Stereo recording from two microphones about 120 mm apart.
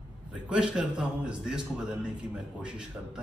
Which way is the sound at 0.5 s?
5° right (ahead or behind).